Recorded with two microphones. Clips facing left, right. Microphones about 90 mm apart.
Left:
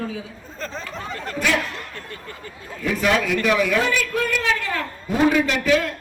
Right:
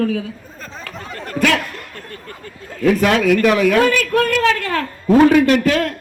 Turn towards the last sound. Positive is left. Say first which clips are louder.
# right 5 dB
turn(degrees=-60)  # may be behind; listen again after turning